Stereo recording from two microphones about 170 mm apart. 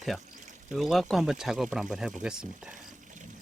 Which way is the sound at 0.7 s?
Centre (ahead or behind).